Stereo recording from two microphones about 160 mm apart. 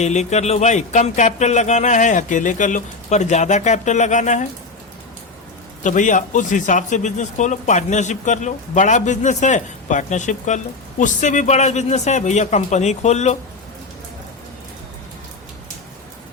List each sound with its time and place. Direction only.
0.0 s speech: 45° left (ahead or behind)
5.8 s speech: 50° left (ahead or behind)